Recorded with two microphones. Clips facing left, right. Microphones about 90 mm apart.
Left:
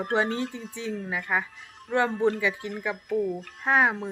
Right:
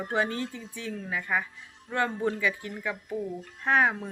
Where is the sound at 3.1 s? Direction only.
65° left (ahead or behind).